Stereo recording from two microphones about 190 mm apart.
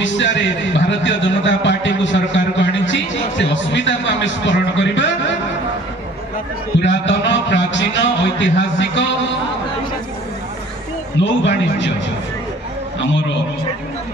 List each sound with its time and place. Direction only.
0.0 s a man's voice: 70° left (ahead or behind)
6.8 s a man's voice: 70° left (ahead or behind)
11.1 s a man's voice: 70° left (ahead or behind)